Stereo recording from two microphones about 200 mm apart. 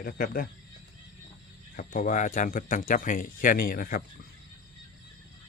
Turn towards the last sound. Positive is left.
turn(degrees=45)  # may be behind; listen again after turning